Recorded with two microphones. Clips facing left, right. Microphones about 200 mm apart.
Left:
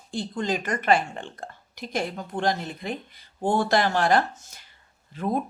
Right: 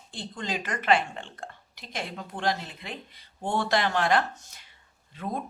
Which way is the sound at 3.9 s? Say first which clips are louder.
Left 3 dB; 40° left (ahead or behind).